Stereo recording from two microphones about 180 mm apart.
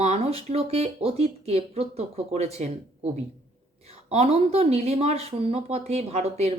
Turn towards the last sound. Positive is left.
turn(degrees=-35)  # may be behind; listen again after turning